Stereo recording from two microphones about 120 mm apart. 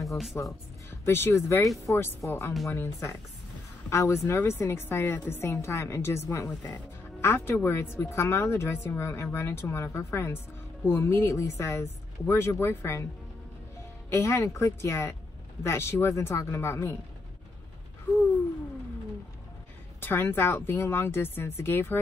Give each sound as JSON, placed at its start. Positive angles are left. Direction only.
{"t": 0.0, "sound": "speech", "side_deg": 0}
{"t": 0.4, "sound": "a woman's voice", "side_deg": 20}
{"t": 3.9, "sound": "a woman's voice", "side_deg": 25}
{"t": 14.1, "sound": "a woman's voice", "side_deg": 20}
{"t": 20.0, "sound": "a woman's voice", "side_deg": 20}